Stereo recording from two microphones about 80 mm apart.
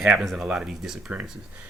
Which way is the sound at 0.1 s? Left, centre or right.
Centre.